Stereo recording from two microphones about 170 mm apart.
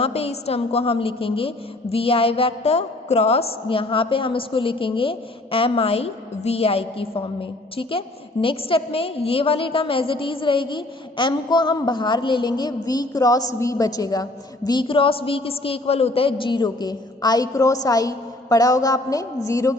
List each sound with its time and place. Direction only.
0.0 s a woman's voice: 35° left (ahead or behind); by 19.7 s 20° left (ahead or behind)